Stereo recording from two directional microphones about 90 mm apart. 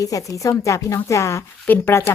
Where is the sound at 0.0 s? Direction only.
40° left (ahead or behind).